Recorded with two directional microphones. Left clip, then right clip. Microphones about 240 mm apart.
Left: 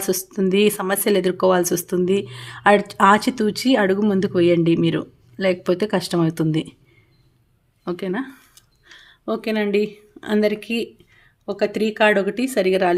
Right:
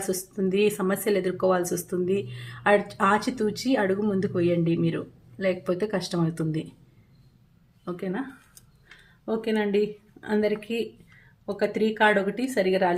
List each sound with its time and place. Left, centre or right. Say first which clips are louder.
0.0 s speech: left 6 dB; left
7.9 s speech: left 7 dB; left
9.2 s speech: left 4 dB; left